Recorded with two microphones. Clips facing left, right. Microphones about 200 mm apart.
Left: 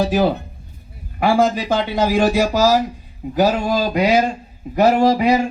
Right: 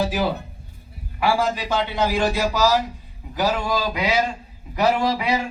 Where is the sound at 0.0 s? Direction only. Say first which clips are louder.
Left 6 dB; 45° left (ahead or behind).